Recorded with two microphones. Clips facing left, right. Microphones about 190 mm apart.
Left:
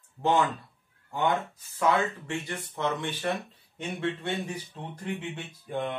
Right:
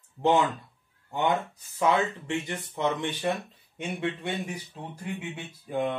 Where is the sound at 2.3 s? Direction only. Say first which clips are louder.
Right 3 dB; 20° right (ahead or behind).